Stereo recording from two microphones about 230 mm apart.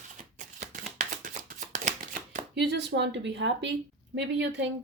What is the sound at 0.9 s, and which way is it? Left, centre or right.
Shuffling cards, right.